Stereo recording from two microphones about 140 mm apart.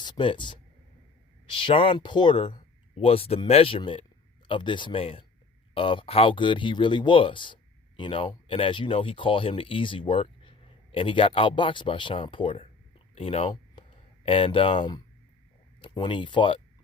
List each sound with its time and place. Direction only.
0.0 s speech: 35° left (ahead or behind)